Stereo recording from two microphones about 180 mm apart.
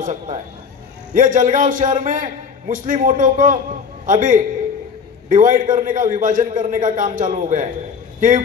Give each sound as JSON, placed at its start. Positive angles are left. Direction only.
{"t": 0.0, "sound": "a man's voice", "side_deg": -45}